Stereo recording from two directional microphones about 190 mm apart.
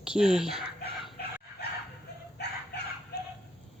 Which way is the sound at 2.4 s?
60° left (ahead or behind).